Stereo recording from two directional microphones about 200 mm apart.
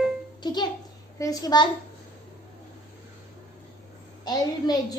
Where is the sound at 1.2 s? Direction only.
20° left (ahead or behind).